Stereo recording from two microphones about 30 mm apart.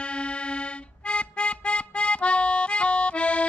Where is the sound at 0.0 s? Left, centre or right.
Left.